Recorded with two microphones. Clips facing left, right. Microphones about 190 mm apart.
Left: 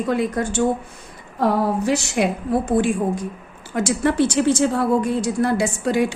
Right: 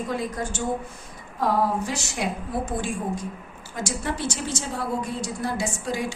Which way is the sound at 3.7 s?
65° left (ahead or behind).